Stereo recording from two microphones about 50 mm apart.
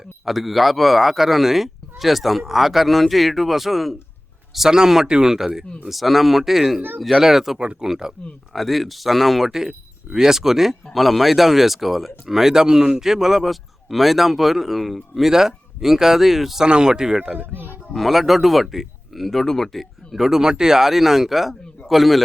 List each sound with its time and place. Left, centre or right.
0.3 s speech: centre
7.6 s speech: right
7.9 s speech: centre
16.6 s speech: centre